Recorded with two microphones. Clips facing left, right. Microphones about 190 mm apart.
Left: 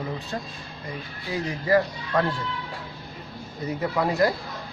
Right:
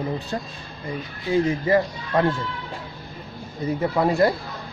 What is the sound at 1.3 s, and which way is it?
Speech, 25° right (ahead or behind).